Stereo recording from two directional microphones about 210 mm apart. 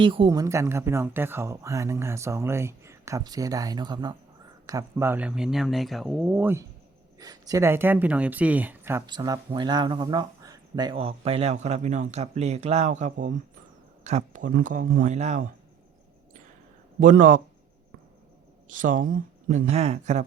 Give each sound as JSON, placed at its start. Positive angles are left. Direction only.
{"t": 0.0, "sound": "speech", "side_deg": -25}
{"t": 17.0, "sound": "speech", "side_deg": -40}
{"t": 18.7, "sound": "speech", "side_deg": -40}